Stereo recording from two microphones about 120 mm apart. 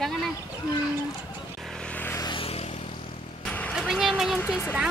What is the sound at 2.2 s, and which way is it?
Vehicle, 45° left (ahead or behind).